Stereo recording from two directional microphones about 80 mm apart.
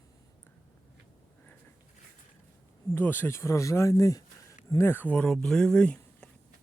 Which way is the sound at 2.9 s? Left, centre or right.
Left.